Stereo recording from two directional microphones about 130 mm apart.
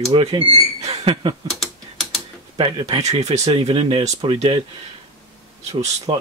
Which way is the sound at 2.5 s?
40° right (ahead or behind).